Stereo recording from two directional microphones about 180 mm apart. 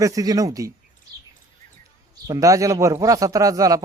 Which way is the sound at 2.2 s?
20° right (ahead or behind).